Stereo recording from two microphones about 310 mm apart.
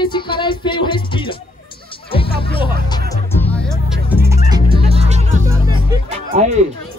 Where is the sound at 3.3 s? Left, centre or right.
Centre.